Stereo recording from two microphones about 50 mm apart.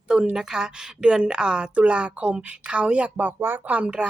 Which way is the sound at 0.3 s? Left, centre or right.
Centre.